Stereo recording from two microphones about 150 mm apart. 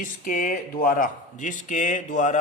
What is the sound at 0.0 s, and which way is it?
Speech, 65° left (ahead or behind).